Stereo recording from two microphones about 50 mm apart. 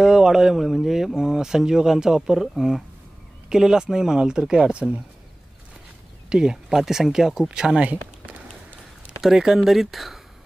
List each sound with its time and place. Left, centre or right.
0.0 s speech: centre
6.2 s speech: centre
7.8 s a sound: right
9.2 s speech: centre